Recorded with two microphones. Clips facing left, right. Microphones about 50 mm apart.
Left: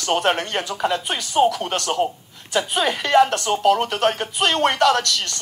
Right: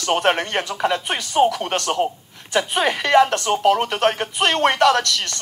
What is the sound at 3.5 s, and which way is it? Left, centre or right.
Speech, centre.